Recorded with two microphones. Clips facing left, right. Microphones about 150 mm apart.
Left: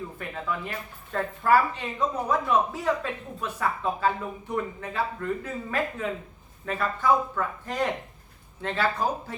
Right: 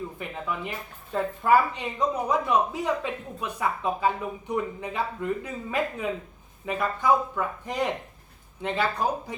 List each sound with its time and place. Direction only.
0.2 s speech: 15° right (ahead or behind)